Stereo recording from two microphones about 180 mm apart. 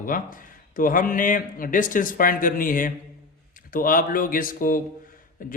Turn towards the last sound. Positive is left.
turn(degrees=50)  # may be behind; listen again after turning